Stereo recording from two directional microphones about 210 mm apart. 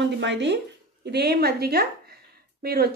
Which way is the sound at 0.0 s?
55° right (ahead or behind).